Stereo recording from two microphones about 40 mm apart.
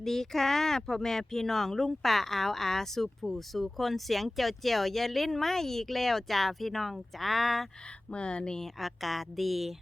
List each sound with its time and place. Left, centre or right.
0.0 s speech: centre
8.1 s speech: left
8.6 s speech: centre